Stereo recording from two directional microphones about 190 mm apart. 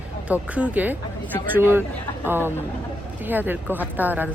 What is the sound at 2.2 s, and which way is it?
Speech, 10° right (ahead or behind).